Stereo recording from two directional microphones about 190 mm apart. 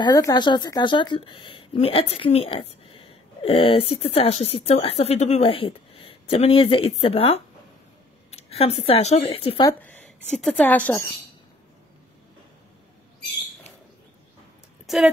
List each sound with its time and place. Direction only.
0.0 s a woman's voice: 20° left (ahead or behind)
9.7 s a woman's voice: 10° left (ahead or behind)
14.9 s a woman's voice: centre (ahead or behind)